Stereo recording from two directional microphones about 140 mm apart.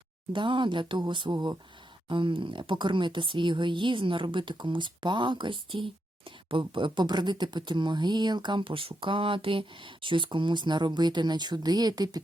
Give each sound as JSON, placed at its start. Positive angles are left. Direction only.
{"t": 0.3, "sound": "speech", "side_deg": -35}